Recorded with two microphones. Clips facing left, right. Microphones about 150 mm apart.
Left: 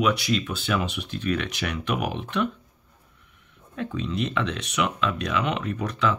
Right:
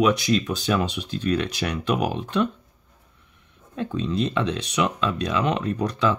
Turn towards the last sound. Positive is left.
turn(degrees=-35)  # may be behind; listen again after turning